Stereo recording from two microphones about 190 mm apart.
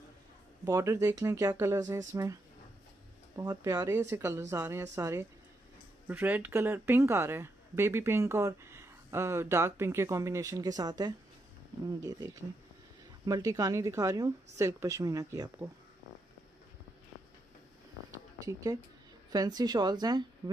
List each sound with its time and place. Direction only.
0.7 s speech: 15° right (ahead or behind)
3.3 s a woman's voice: 20° right (ahead or behind)
18.4 s a woman's voice: 20° right (ahead or behind)